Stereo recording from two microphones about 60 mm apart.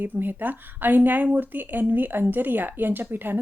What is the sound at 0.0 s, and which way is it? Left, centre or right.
Speech, right.